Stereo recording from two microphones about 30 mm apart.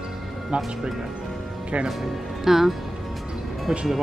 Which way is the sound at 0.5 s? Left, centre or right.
Right.